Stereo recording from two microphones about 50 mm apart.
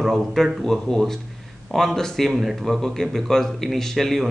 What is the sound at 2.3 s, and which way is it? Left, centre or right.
A man's voice, centre.